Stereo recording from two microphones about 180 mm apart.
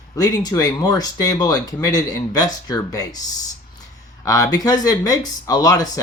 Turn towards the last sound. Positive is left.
turn(degrees=20)  # may be behind; listen again after turning